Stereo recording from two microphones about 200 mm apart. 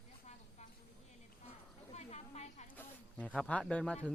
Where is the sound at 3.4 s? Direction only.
5° left (ahead or behind).